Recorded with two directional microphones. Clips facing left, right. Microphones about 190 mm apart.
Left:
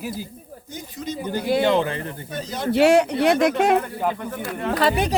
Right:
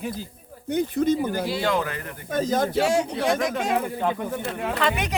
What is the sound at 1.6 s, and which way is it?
Speech, 25° left (ahead or behind).